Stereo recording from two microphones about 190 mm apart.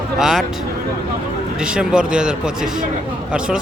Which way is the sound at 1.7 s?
5° right (ahead or behind).